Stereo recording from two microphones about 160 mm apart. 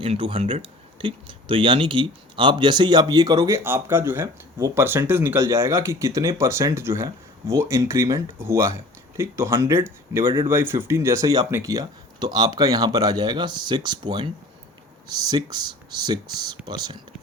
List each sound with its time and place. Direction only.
0.0 s speech: 35° right (ahead or behind)